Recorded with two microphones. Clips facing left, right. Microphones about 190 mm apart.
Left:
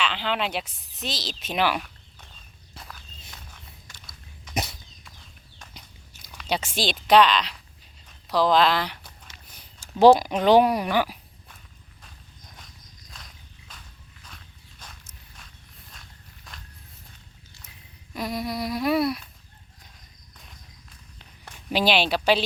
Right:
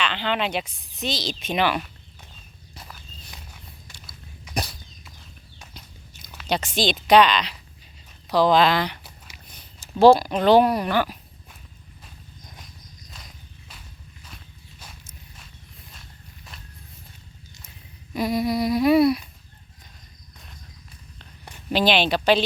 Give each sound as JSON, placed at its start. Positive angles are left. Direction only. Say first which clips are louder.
{"t": 0.0, "sound": "humming", "louder": "right 2 dB", "side_deg": 5}
{"t": 2.7, "sound": "walk", "louder": "even", "side_deg": -5}
{"t": 3.3, "sound": "a sound", "louder": "even", "side_deg": -10}
{"t": 4.5, "sound": "a sound", "louder": "even", "side_deg": 25}
{"t": 6.5, "sound": "speech", "louder": "right 3 dB", "side_deg": 5}
{"t": 6.9, "sound": "humming", "louder": "right 1 dB", "side_deg": 0}
{"t": 8.3, "sound": "speech", "louder": "right 2 dB", "side_deg": 0}
{"t": 18.1, "sound": "humming", "louder": "right 6 dB", "side_deg": -5}
{"t": 21.7, "sound": "speech", "louder": "right 2 dB", "side_deg": 10}